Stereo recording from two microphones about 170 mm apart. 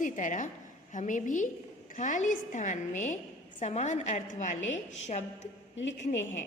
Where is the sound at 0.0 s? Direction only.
50° left (ahead or behind).